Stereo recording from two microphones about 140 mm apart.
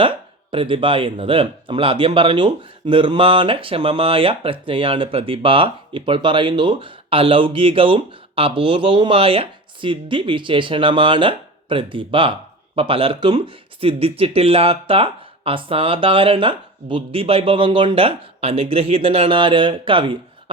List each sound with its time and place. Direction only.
0.5 s speech: 40° right (ahead or behind)